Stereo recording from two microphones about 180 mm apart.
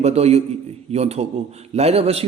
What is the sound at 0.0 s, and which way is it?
Speech, 35° right (ahead or behind).